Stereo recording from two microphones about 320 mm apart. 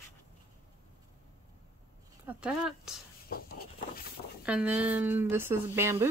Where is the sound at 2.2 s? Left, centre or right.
Centre.